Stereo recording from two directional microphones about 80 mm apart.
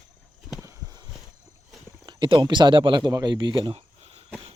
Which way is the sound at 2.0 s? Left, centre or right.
Right.